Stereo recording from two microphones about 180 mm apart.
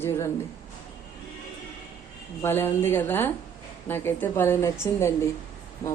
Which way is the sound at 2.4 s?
10° left (ahead or behind).